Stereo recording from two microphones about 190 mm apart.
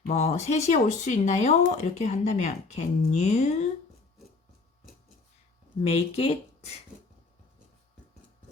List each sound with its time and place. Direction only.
0.1 s speech: 35° left (ahead or behind)
5.8 s speech: 30° left (ahead or behind)